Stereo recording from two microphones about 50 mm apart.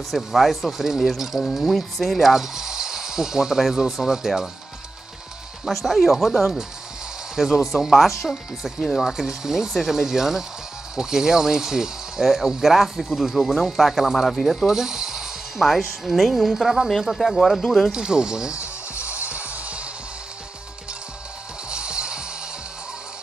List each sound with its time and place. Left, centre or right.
0.1 s speech: centre
5.7 s speech: centre
14.7 s speech: centre
17.9 s speech: centre
18.6 s music: right
21.6 s music: centre